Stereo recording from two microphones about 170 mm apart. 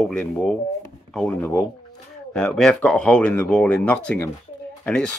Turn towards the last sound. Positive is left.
turn(degrees=5)  # may be behind; listen again after turning